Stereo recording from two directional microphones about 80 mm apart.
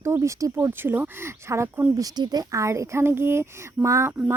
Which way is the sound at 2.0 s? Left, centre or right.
Right.